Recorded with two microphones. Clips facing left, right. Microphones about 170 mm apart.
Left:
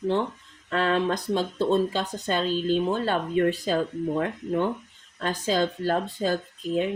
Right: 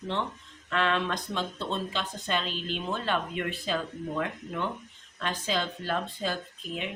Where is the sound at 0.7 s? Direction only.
40° left (ahead or behind).